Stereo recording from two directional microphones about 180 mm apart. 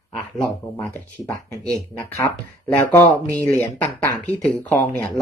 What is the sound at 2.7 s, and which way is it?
Speech, 15° left (ahead or behind).